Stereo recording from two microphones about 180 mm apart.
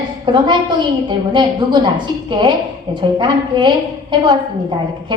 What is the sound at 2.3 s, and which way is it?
A woman's voice, 25° right (ahead or behind).